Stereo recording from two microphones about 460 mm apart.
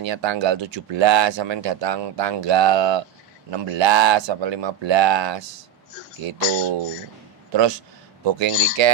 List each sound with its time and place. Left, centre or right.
0.0 s speech: right
6.2 s speech: right
7.5 s speech: right